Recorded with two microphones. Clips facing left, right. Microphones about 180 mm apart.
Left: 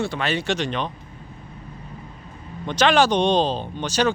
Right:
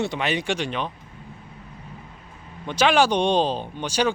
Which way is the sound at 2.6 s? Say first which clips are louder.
Left 1 dB; 10° right (ahead or behind).